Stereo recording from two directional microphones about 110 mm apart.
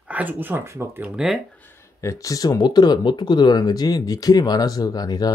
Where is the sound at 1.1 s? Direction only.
Centre (ahead or behind).